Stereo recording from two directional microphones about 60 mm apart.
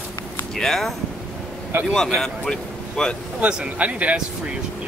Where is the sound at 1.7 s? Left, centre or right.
Right.